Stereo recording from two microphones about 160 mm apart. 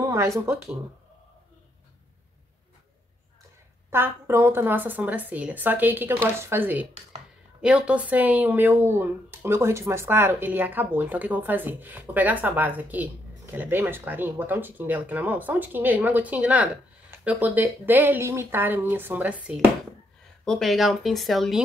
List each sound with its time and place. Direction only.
0.0 s speech: 20° right (ahead or behind)
3.9 s speech: 15° right (ahead or behind)
20.4 s speech: centre (ahead or behind)